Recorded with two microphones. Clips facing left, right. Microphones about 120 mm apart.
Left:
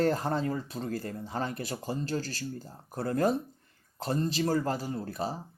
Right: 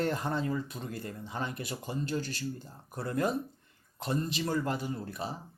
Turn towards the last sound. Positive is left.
turn(degrees=35)  # may be behind; listen again after turning